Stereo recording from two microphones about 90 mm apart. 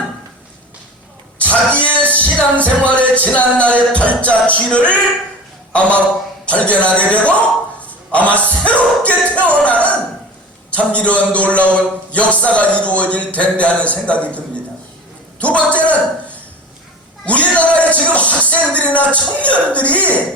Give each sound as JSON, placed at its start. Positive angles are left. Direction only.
{"t": 1.4, "sound": "a sound", "side_deg": 15}
{"t": 2.0, "sound": "music", "side_deg": 15}
{"t": 3.8, "sound": "a man's voice", "side_deg": 15}
{"t": 7.8, "sound": "a sound", "side_deg": 15}
{"t": 10.7, "sound": "a man's voice", "side_deg": 15}
{"t": 17.2, "sound": "speech", "side_deg": 15}